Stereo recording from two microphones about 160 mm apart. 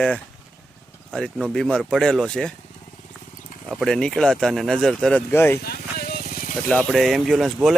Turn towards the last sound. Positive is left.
turn(degrees=0)  # may be behind; listen again after turning